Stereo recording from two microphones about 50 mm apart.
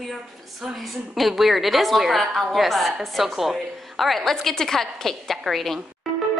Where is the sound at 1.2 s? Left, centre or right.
Centre.